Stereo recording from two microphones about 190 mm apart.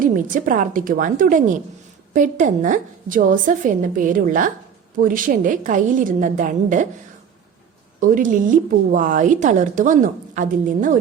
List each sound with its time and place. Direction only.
0.0 s a woman's voice: 45° right (ahead or behind)
8.0 s a woman's voice: 45° right (ahead or behind)